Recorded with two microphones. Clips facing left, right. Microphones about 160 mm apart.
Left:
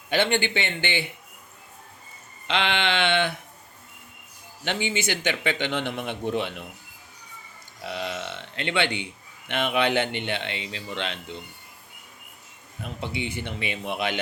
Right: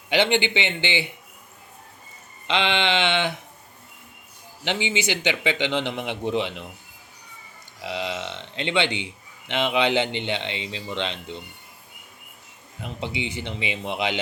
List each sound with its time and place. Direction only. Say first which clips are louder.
0.1 s speech: right 2 dB; 20° right (ahead or behind)
2.5 s speech: right 2 dB; 20° right (ahead or behind)
4.6 s speech: right 2 dB; 20° right (ahead or behind)
7.9 s speech: right 2 dB; 20° right (ahead or behind)
12.8 s speech: right 1 dB; 20° right (ahead or behind)